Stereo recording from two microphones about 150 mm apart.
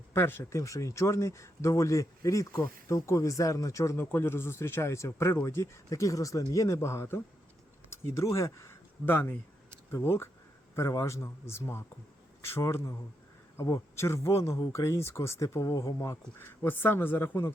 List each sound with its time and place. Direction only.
0.1 s speech: 15° left (ahead or behind)